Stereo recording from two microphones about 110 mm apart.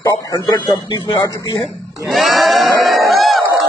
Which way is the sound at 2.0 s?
Centre (ahead or behind).